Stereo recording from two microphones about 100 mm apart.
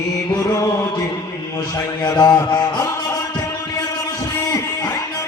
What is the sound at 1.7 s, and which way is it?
Music, 40° left (ahead or behind).